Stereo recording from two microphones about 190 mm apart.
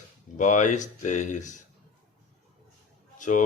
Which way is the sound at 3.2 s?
40° left (ahead or behind).